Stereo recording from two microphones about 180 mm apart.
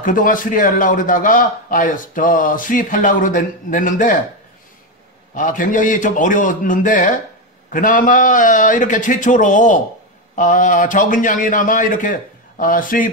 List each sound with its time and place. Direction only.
0.0 s a man's voice: 50° left (ahead or behind)
5.3 s a man's voice: 45° left (ahead or behind)